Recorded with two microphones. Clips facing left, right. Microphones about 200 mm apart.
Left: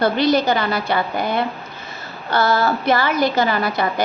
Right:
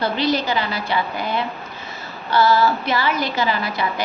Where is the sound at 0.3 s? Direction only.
50° left (ahead or behind).